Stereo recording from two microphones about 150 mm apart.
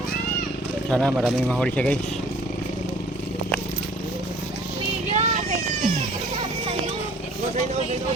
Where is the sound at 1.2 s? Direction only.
Centre (ahead or behind).